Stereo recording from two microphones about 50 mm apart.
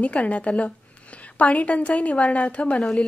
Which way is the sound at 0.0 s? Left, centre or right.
Left.